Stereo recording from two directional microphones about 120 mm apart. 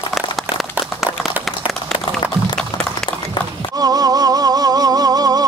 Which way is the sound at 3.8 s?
30° right (ahead or behind).